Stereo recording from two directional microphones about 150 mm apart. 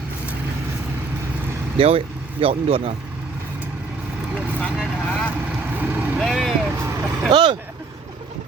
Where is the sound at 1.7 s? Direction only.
40° right (ahead or behind).